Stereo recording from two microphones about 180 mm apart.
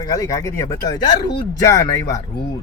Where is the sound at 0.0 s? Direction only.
20° left (ahead or behind).